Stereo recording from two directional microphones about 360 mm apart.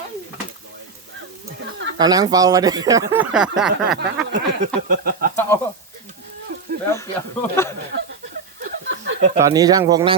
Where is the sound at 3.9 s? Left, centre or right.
Right.